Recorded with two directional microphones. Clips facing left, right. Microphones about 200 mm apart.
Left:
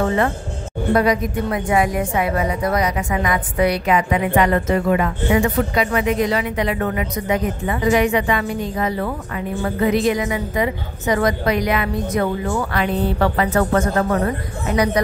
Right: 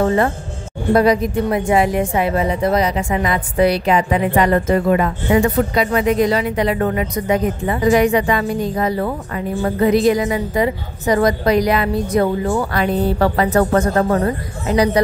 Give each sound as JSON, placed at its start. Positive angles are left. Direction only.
{"t": 0.9, "sound": "a woman's voice", "side_deg": -30}